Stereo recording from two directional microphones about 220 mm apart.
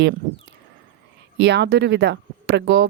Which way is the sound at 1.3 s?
50° right (ahead or behind).